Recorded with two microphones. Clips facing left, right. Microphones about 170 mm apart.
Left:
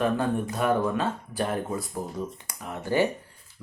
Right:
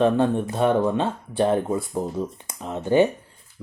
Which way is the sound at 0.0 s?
25° right (ahead or behind).